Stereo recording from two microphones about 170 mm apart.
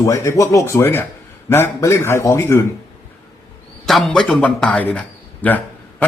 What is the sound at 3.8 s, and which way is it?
A man's voice, centre (ahead or behind).